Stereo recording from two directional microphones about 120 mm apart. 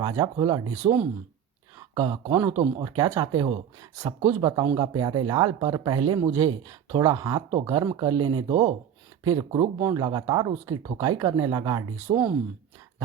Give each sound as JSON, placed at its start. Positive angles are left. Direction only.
{"t": 0.0, "sound": "speech", "side_deg": -40}
{"t": 2.2, "sound": "speech", "side_deg": -30}
{"t": 9.2, "sound": "speech", "side_deg": -30}